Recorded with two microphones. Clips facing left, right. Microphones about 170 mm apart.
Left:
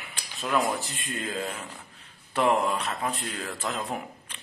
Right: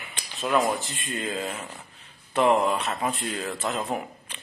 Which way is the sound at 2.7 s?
30° right (ahead or behind).